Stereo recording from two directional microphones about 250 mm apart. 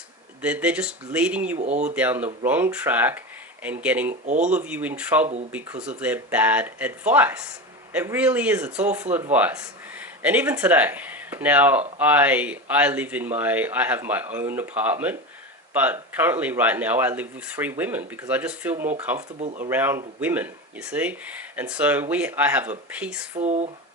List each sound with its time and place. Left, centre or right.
0.4 s speech: centre
1.6 s speech: right
2.0 s speech: centre
4.1 s speech: right
4.5 s speech: centre
19.4 s speech: right
19.6 s speech: centre
23.4 s speech: right